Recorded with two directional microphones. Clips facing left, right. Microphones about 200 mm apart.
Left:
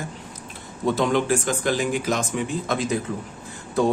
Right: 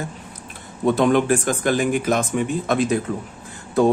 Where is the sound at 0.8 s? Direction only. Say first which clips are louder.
Right 4 dB; 55° right (ahead or behind).